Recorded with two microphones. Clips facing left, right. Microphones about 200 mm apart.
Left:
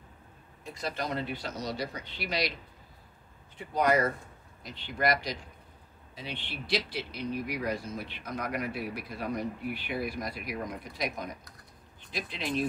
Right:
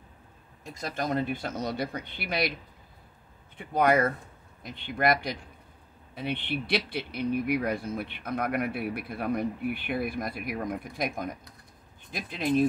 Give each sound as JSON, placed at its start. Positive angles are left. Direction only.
{"t": 0.7, "sound": "speech", "side_deg": -45}
{"t": 3.5, "sound": "a man's voice", "side_deg": -55}